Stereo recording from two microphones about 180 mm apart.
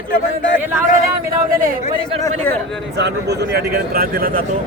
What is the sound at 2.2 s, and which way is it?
Speech, 10° left (ahead or behind).